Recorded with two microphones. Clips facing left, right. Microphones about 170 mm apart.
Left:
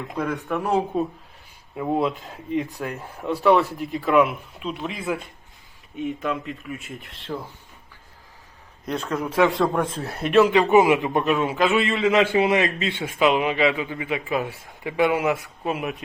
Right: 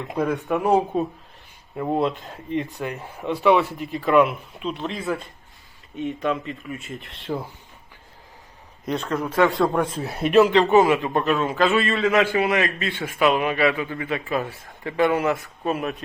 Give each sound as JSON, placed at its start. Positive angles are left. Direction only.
{"t": 0.3, "sound": "speech", "side_deg": -20}
{"t": 1.7, "sound": "speech", "side_deg": 0}
{"t": 3.9, "sound": "speech", "side_deg": 5}
{"t": 8.8, "sound": "speech", "side_deg": 0}
{"t": 10.5, "sound": "a man's voice", "side_deg": 10}